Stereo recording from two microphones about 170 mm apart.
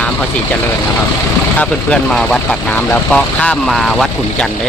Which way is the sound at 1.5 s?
5° left (ahead or behind).